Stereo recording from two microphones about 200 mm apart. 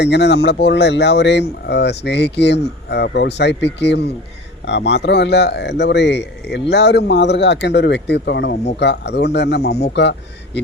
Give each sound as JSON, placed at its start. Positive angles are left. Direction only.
{"t": 0.0, "sound": "speech", "side_deg": 60}